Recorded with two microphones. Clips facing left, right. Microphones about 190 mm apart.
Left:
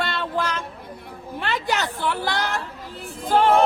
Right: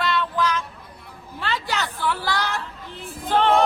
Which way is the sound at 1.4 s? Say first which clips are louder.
Left 2 dB; 15° left (ahead or behind).